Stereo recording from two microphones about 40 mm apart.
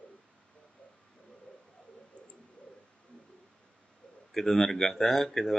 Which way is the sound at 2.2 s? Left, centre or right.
Left.